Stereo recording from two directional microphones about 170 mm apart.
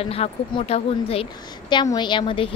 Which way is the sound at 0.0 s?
35° left (ahead or behind).